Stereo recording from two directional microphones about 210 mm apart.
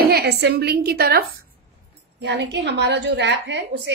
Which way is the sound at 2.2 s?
55° right (ahead or behind).